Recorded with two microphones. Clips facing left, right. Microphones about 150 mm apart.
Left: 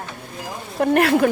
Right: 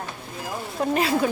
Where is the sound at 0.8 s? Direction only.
60° left (ahead or behind).